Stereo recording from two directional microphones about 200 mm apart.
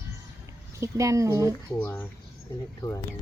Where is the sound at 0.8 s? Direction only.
15° right (ahead or behind).